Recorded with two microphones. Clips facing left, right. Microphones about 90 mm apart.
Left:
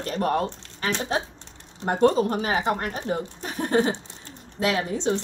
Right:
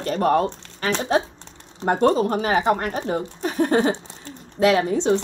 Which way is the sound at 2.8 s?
85° right.